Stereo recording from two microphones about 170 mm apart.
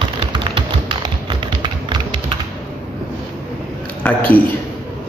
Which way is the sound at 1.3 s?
25° right (ahead or behind).